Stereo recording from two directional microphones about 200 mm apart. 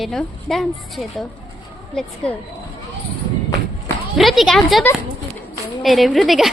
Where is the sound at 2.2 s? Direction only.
5° left (ahead or behind).